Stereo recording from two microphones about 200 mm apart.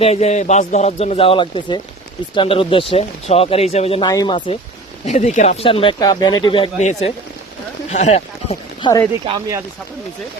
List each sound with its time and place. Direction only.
0.0 s speech: 30° left (ahead or behind)
5.0 s speech: 35° left (ahead or behind)
9.2 s speech: 25° right (ahead or behind)